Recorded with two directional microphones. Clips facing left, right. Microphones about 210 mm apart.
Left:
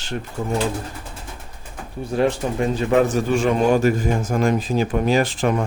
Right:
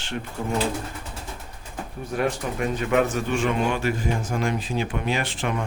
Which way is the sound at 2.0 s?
30° left (ahead or behind).